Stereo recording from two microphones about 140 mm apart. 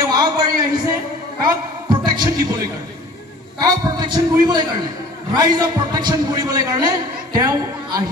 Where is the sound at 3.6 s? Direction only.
30° right (ahead or behind).